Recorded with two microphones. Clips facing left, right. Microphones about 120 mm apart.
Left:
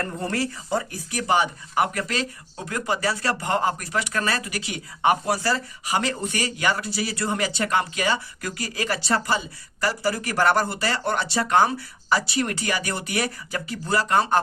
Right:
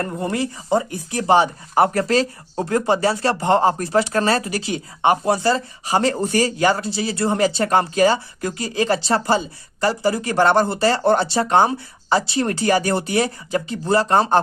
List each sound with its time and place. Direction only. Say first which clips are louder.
0.0 s speech: right 4 dB; 20° right (ahead or behind)